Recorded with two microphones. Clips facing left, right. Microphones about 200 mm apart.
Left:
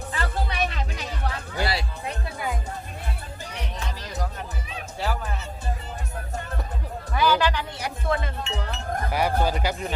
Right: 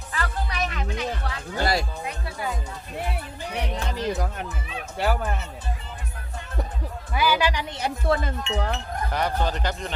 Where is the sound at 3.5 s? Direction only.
60° right (ahead or behind).